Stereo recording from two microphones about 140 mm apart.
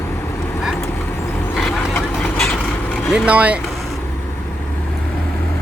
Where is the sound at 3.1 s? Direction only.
10° right (ahead or behind).